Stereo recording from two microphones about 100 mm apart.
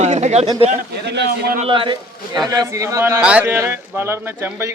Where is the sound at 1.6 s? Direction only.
60° right (ahead or behind).